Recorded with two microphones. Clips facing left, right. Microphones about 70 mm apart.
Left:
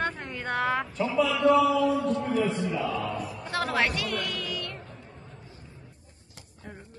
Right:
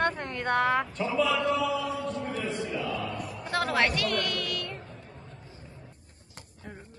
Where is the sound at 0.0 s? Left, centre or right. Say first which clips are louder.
Right 3 dB; centre.